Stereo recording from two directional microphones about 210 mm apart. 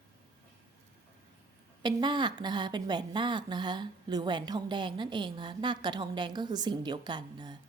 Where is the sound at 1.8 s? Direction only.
20° right (ahead or behind).